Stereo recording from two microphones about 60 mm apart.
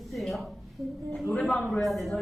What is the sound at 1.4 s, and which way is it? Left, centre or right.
Speech, centre.